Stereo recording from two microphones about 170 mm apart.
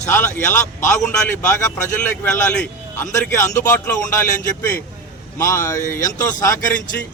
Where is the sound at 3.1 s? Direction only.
15° left (ahead or behind).